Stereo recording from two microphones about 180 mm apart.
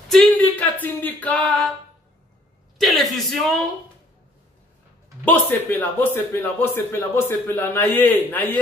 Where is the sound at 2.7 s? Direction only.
Centre (ahead or behind).